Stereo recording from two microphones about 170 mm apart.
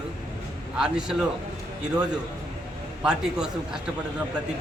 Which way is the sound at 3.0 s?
5° right (ahead or behind).